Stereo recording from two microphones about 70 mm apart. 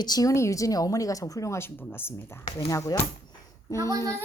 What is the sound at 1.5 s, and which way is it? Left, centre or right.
Speech, left.